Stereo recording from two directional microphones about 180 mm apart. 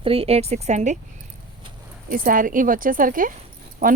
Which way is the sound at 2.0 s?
50° right (ahead or behind).